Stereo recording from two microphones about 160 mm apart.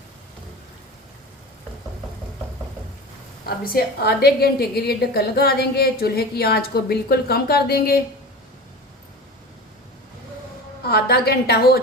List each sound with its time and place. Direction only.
3.6 s a woman's voice: 70° left (ahead or behind)
10.8 s a woman's voice: 75° left (ahead or behind)